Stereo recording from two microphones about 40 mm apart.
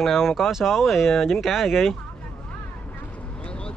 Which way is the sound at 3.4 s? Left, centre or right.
Left.